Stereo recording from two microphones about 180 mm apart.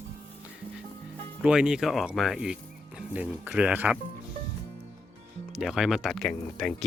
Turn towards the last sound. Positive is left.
turn(degrees=5)  # may be behind; listen again after turning